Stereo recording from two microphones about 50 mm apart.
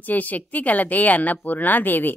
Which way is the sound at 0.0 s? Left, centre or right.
Left.